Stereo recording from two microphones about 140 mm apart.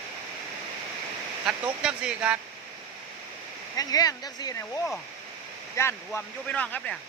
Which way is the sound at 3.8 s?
25° left (ahead or behind).